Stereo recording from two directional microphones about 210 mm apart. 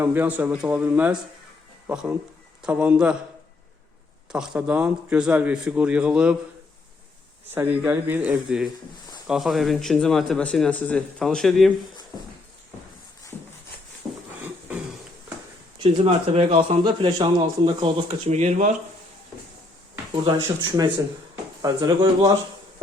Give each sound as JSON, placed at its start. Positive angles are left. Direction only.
{"t": 0.0, "sound": "speech", "side_deg": -10}
{"t": 4.3, "sound": "speech", "side_deg": -5}
{"t": 7.5, "sound": "speech", "side_deg": -10}
{"t": 15.8, "sound": "a man's voice", "side_deg": -25}
{"t": 20.2, "sound": "a man's voice", "side_deg": -20}